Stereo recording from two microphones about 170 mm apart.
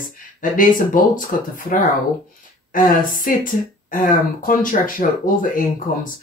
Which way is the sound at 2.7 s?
55° left (ahead or behind).